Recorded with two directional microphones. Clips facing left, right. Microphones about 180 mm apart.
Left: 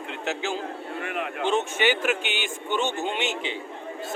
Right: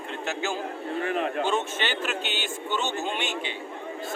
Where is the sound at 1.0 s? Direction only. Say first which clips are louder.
Right 5 dB; 35° right (ahead or behind).